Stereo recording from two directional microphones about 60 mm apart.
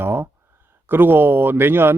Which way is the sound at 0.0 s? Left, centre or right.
Right.